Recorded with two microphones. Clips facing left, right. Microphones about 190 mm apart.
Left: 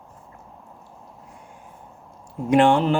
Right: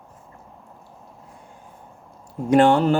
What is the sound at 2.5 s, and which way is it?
Speech, 40° right (ahead or behind).